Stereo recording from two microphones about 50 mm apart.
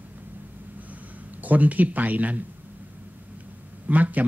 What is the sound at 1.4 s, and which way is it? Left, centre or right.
A man's voice, right.